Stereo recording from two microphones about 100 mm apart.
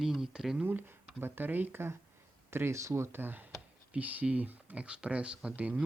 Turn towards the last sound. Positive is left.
turn(degrees=-15)  # may be behind; listen again after turning